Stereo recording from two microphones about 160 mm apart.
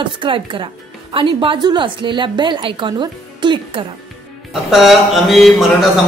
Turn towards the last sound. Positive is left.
turn(degrees=0)  # may be behind; listen again after turning